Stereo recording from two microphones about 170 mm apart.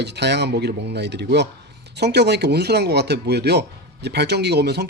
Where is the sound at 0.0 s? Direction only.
80° right.